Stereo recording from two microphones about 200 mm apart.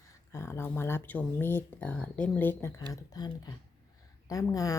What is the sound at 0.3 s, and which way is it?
A woman's voice, 15° left (ahead or behind).